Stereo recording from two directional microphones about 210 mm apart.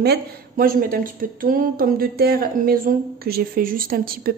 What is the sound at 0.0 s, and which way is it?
A woman's voice, 45° right (ahead or behind).